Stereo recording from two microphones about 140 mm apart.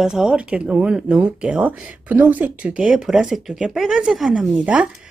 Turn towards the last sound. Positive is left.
turn(degrees=-10)  # may be behind; listen again after turning